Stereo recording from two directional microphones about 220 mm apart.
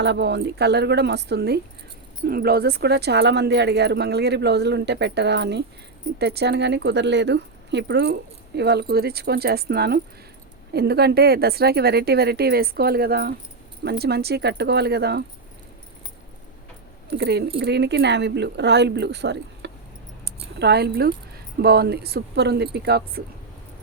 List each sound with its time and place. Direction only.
0.0 s speech: 50° right (ahead or behind)
17.1 s speech: 50° right (ahead or behind)